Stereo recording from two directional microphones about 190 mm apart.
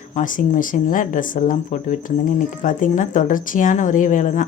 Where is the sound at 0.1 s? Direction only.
45° left (ahead or behind).